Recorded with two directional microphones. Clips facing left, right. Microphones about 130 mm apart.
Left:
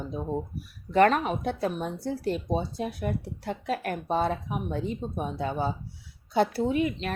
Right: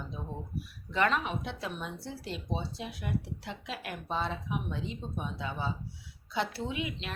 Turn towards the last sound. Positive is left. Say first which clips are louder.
# left 10 dB
turn(degrees=45)  # may be behind; listen again after turning